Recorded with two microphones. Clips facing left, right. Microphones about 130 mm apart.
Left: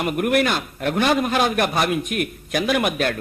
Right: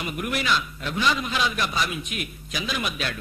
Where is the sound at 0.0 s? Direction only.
55° left (ahead or behind).